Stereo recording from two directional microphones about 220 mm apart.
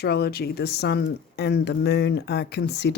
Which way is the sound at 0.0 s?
45° left (ahead or behind).